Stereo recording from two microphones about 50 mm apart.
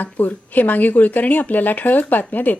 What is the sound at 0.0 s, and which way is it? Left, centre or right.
A woman's voice, left.